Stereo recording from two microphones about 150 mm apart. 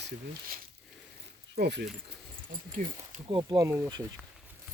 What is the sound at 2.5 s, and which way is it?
Speech, 55° right (ahead or behind).